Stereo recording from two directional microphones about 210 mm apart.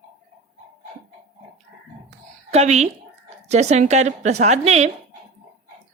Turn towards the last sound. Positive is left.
turn(degrees=-30)  # may be behind; listen again after turning